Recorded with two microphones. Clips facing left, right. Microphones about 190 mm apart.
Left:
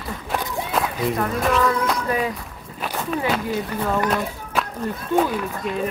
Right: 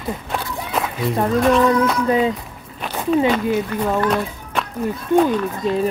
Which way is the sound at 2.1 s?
25° right (ahead or behind).